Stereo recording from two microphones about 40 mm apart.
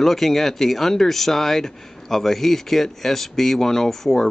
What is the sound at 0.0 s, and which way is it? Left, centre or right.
Speech, centre.